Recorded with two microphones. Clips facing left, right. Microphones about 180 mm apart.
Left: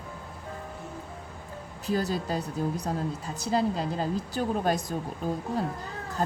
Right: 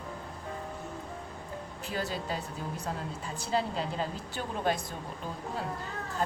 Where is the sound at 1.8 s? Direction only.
40° left (ahead or behind).